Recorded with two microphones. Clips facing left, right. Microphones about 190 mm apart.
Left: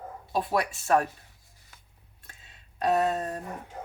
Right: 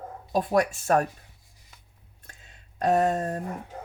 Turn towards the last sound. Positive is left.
turn(degrees=-45)  # may be behind; listen again after turning